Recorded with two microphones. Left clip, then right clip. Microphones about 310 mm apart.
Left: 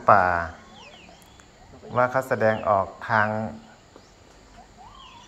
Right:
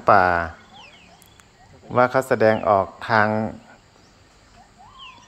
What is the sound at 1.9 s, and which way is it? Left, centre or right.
Speech, centre.